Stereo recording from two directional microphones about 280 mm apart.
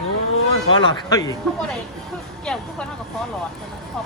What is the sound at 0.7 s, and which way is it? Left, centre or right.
Speech, centre.